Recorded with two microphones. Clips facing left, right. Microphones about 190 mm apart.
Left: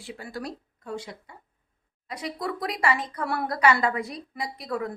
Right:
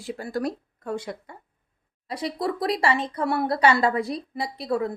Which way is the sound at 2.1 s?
30° right (ahead or behind).